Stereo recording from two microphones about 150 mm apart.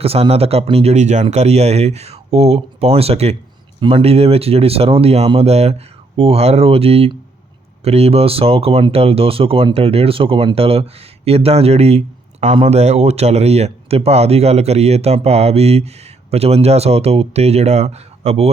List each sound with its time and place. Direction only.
0.0 s speech: 40° right (ahead or behind)